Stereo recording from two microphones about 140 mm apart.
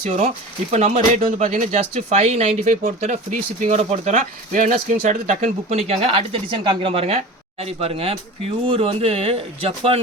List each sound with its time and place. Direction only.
0.0 s speech: 55° right (ahead or behind)